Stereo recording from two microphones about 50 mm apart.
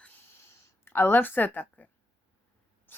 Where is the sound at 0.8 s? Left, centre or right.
Left.